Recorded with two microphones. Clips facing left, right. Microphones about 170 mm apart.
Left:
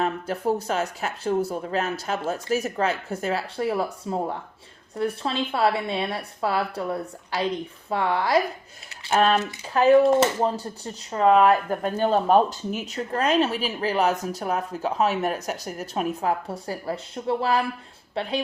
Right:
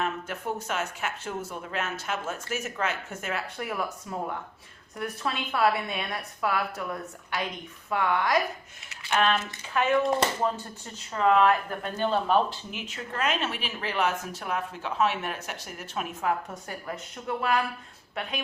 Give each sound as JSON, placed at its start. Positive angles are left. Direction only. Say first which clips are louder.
{"t": 0.0, "sound": "speech", "louder": "left 6 dB", "side_deg": 35}
{"t": 11.1, "sound": "speech", "louder": "left 4 dB", "side_deg": 35}